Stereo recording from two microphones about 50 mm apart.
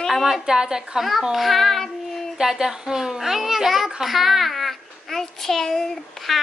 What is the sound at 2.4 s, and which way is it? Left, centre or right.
A child's voice, centre.